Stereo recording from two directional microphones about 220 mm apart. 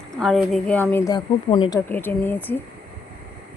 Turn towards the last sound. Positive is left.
turn(degrees=10)  # may be behind; listen again after turning